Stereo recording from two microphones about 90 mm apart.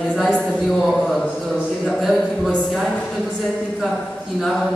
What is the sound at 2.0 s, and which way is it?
Speech, centre (ahead or behind).